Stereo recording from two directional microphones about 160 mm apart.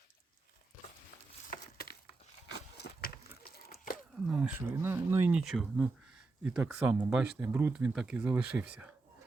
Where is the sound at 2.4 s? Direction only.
90° left.